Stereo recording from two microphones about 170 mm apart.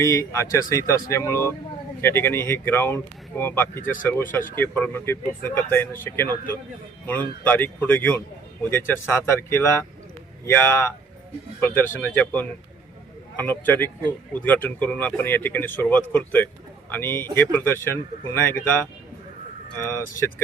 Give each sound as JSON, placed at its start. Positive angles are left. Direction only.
{"t": 0.0, "sound": "speech", "side_deg": 15}
{"t": 19.8, "sound": "speech", "side_deg": 15}